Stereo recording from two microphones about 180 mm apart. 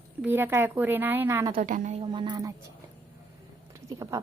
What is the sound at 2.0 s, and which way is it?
Speech, 25° right (ahead or behind).